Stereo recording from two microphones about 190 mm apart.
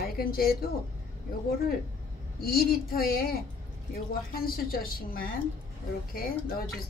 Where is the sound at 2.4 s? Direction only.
50° left (ahead or behind).